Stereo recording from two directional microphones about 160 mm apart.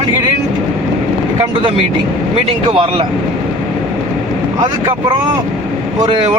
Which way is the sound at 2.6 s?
30° right (ahead or behind).